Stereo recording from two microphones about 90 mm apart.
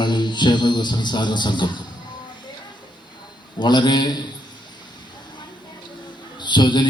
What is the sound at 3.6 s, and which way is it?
Speech, 55° left (ahead or behind).